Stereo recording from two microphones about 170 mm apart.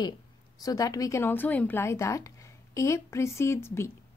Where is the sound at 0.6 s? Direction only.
20° left (ahead or behind).